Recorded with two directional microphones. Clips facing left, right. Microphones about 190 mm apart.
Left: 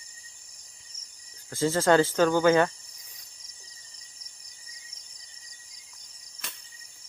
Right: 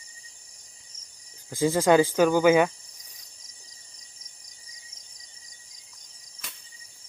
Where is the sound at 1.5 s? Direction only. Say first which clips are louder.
Right 2 dB; 15° right (ahead or behind).